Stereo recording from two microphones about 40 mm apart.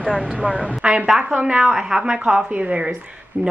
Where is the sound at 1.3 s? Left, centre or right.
Right.